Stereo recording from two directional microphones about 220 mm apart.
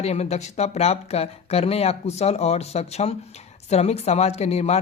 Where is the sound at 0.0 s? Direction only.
30° left (ahead or behind).